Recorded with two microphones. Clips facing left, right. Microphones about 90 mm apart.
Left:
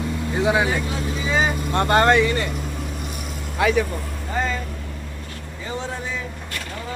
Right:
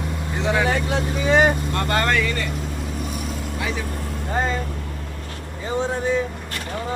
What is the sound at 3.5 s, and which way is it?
Speech, 70° left (ahead or behind).